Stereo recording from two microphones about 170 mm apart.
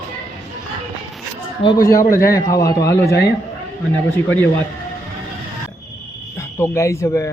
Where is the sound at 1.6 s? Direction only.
25° left (ahead or behind).